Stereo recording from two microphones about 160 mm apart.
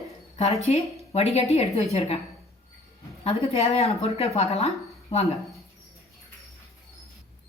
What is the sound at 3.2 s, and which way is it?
A woman's voice, 40° left (ahead or behind).